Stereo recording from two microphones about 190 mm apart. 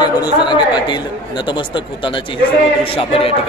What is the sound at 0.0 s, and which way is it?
Speech, 25° left (ahead or behind).